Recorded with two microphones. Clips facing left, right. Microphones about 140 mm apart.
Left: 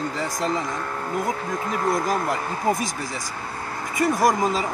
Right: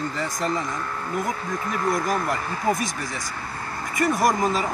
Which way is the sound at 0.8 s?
45° left (ahead or behind).